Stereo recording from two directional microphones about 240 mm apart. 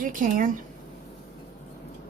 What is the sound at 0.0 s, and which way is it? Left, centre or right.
Speech, right.